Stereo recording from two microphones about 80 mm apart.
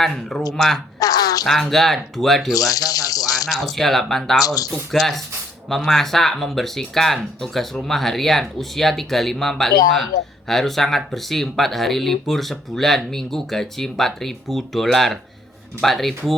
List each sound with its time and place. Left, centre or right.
0.0 s speech: centre
0.9 s a sound: left
1.5 s speech: centre
2.6 s rattle: left
3.5 s speech: centre
4.4 s speech: left
4.7 s speech: centre